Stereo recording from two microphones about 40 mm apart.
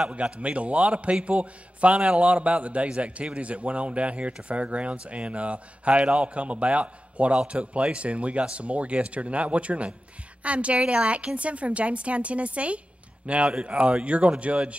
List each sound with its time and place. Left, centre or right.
0.1 s speech: right